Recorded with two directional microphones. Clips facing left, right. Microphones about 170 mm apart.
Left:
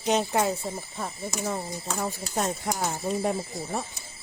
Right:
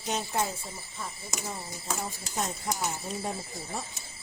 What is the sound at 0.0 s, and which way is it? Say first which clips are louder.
Speech: left 7 dB; 85° left.